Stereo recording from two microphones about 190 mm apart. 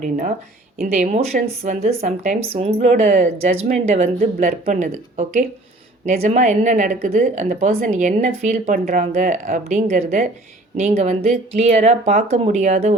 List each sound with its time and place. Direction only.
0.8 s speech: 40° right (ahead or behind)